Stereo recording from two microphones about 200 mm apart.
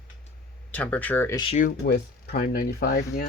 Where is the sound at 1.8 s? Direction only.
55° left (ahead or behind).